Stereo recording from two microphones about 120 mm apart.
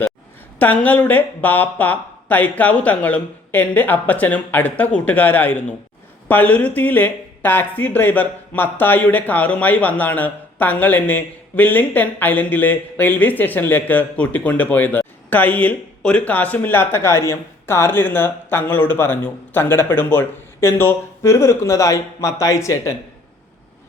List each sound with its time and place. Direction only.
0.6 s speech: 15° left (ahead or behind)